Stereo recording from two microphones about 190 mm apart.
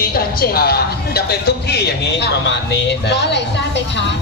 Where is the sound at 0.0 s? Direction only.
55° left (ahead or behind).